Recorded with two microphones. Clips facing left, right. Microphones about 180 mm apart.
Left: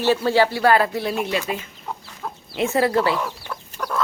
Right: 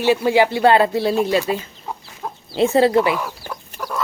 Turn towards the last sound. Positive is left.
turn(degrees=-10)  # may be behind; listen again after turning